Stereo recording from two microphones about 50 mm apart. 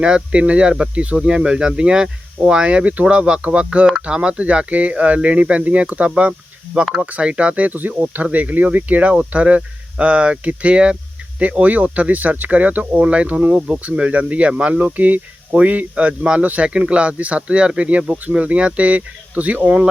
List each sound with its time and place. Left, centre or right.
0.0 s speech: right
16.6 s speech: centre